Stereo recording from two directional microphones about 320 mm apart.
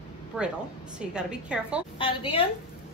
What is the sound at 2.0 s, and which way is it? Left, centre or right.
Speech, centre.